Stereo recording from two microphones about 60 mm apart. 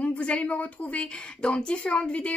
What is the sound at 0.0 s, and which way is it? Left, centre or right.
A woman's voice, left.